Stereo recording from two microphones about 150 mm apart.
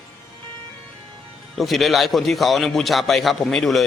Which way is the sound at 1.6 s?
Centre (ahead or behind).